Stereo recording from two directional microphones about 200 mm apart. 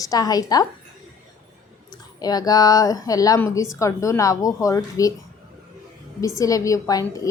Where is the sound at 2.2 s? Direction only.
20° left (ahead or behind).